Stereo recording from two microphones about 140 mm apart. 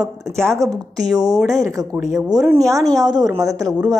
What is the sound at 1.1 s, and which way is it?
Speech, 25° right (ahead or behind).